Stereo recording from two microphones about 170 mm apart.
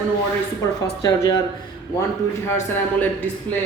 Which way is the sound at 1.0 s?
20° left (ahead or behind).